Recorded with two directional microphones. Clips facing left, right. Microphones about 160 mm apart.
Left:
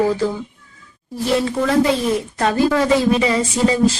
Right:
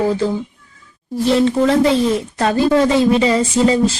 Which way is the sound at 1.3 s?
25° right (ahead or behind).